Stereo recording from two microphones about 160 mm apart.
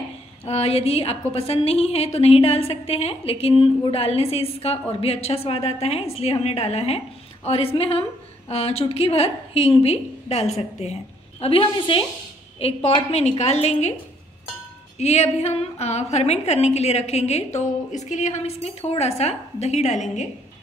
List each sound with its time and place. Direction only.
0.5 s a woman's voice: 40° left (ahead or behind)
15.0 s a woman's voice: 45° left (ahead or behind)